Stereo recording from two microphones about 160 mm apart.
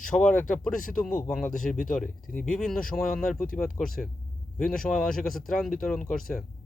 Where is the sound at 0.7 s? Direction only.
55° left (ahead or behind).